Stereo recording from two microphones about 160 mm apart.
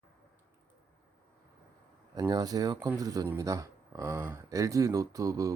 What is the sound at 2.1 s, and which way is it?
Speech, 25° right (ahead or behind).